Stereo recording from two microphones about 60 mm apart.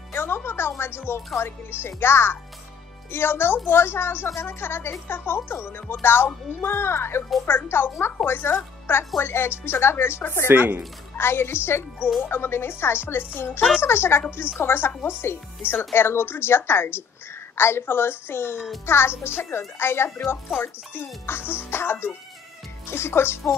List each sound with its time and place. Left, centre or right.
0.1 s music: left
1.4 s speech: left
10.5 s speech: right
11.1 s a woman's voice: left